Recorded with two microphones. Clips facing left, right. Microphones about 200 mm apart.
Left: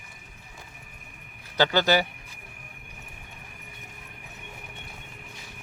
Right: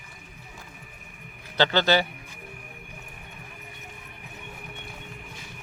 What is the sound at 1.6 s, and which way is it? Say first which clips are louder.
Speech: even; 10° left (ahead or behind).